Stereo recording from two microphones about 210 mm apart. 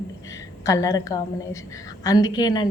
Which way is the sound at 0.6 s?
15° left (ahead or behind).